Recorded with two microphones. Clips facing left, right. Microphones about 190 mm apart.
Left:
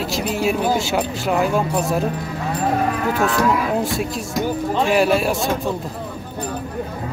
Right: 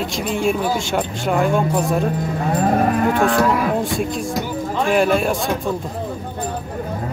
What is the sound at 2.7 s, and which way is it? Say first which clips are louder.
Moo: right 3 dB; 45° right (ahead or behind).